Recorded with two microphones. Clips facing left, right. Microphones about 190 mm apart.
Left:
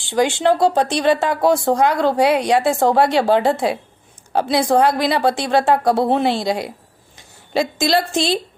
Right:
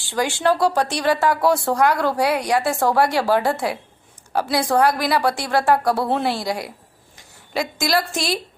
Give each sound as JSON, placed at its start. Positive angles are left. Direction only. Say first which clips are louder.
{"t": 0.0, "sound": "a woman's voice", "louder": "left 4 dB", "side_deg": 20}